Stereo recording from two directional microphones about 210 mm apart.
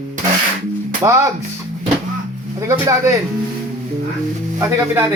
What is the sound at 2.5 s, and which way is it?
Speech, 10° right (ahead or behind).